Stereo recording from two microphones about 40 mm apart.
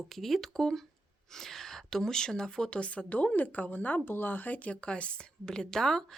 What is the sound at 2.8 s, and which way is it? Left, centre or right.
A woman's voice, left.